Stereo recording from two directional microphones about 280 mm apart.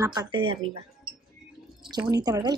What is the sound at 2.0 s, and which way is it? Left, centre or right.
Speech, centre.